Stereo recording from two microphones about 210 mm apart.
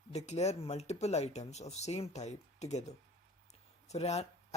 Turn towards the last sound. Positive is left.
turn(degrees=30)  # may be behind; listen again after turning